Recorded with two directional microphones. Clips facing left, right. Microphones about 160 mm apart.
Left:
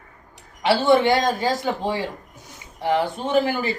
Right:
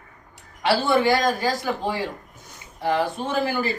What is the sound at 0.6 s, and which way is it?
Speech, 20° left (ahead or behind).